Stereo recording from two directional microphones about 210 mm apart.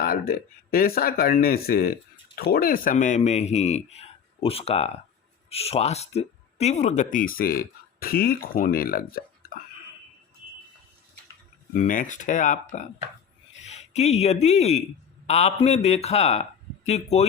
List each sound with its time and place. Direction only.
0.0 s speech: 45° left (ahead or behind)
9.4 s hiccup: 45° left (ahead or behind)
11.7 s speech: 40° left (ahead or behind)